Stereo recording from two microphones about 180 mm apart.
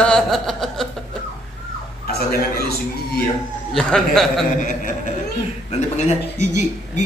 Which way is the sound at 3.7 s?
5° left (ahead or behind).